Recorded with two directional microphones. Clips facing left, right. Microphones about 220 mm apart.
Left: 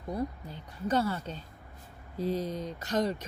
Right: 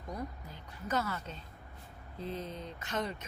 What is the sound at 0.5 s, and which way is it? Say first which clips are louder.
Speech: left 5 dB; 30° left (ahead or behind).